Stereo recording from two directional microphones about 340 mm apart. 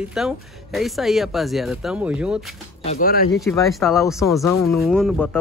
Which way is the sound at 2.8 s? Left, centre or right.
Left.